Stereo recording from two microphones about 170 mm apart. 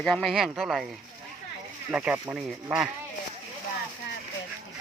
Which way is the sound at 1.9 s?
5° right (ahead or behind).